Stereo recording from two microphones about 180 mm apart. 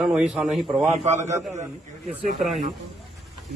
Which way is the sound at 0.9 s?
40° right (ahead or behind).